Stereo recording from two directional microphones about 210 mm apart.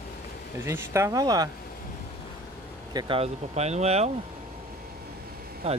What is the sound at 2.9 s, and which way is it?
Speech, 20° right (ahead or behind).